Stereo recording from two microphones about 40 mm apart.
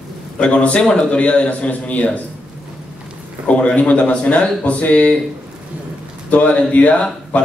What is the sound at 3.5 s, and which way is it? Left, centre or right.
A man's voice, left.